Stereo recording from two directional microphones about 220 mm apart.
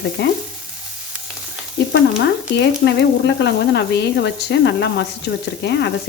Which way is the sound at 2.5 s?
50° left (ahead or behind).